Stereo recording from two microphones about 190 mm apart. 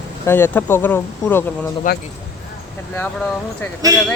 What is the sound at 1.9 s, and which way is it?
Speech, 45° left (ahead or behind).